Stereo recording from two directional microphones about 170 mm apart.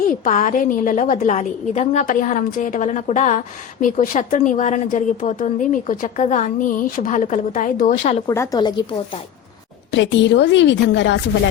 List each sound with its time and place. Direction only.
0.0 s a woman's voice: 50° left (ahead or behind)
8.3 s speech: 20° left (ahead or behind)
9.9 s a woman's voice: 90° left